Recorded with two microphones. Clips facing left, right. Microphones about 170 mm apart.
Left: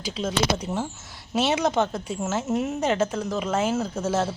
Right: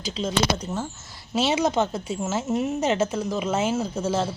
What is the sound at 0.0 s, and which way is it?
Speech, 5° left (ahead or behind).